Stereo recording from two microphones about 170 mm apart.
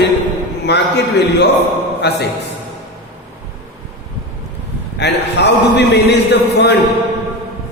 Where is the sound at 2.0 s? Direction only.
75° left (ahead or behind).